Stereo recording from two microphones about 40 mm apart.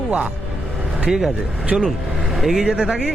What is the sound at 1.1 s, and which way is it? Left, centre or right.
Speech, centre.